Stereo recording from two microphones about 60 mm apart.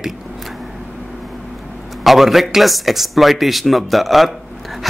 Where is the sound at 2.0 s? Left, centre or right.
Centre.